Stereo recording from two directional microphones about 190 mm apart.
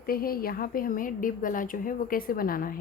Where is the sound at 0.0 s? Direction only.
50° left (ahead or behind).